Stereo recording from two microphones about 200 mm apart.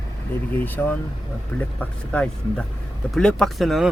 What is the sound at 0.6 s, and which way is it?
Speech, 10° left (ahead or behind).